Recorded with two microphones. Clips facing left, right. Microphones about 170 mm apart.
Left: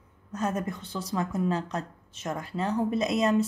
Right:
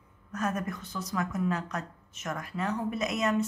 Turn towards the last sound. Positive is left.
turn(degrees=30)  # may be behind; listen again after turning